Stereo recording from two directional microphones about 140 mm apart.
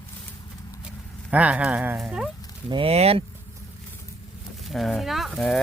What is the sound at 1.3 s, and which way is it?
Speech, 10° right (ahead or behind).